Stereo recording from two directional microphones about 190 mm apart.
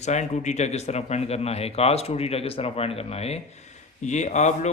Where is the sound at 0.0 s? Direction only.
35° left (ahead or behind).